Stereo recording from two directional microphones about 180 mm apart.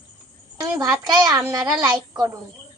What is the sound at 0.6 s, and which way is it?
A woman's voice, 20° right (ahead or behind).